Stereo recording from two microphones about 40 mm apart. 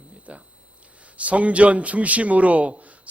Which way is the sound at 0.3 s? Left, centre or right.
Right.